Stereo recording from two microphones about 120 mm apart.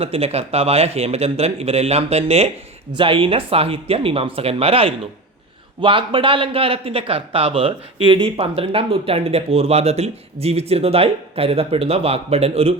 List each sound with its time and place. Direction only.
0.0 s a man's voice: 55° right (ahead or behind)
2.9 s a man's voice: 45° right (ahead or behind)